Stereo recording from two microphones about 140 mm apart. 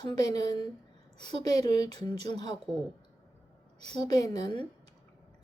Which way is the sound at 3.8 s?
30° left (ahead or behind).